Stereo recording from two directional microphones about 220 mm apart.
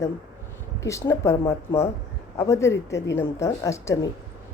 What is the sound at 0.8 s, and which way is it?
Speech, 15° left (ahead or behind).